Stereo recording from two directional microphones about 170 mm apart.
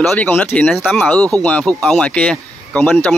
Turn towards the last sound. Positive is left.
turn(degrees=5)  # may be behind; listen again after turning